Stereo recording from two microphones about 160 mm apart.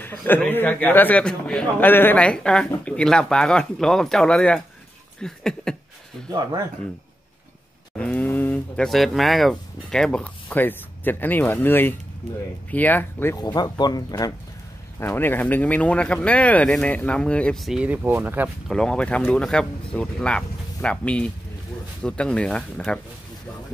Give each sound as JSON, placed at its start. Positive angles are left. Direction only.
{"t": 0.0, "sound": "speech", "side_deg": 10}
{"t": 8.0, "sound": "speech", "side_deg": 10}
{"t": 13.4, "sound": "speech", "side_deg": 25}
{"t": 15.0, "sound": "speech", "side_deg": 15}
{"t": 18.7, "sound": "speech", "side_deg": 5}